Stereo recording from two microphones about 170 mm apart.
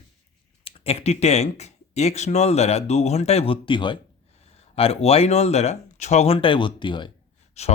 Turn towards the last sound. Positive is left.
turn(degrees=40)  # may be behind; listen again after turning